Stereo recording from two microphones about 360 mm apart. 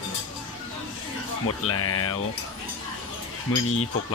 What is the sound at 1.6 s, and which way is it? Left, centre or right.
Speech, left.